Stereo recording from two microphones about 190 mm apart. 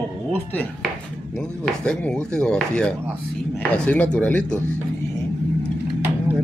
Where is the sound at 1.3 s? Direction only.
5° left (ahead or behind).